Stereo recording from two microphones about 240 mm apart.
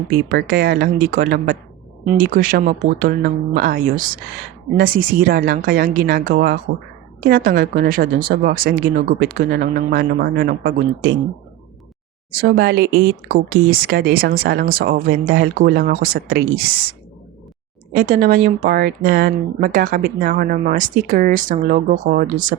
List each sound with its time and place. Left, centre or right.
0.3 s speech: right
12.3 s speech: right
17.9 s speech: right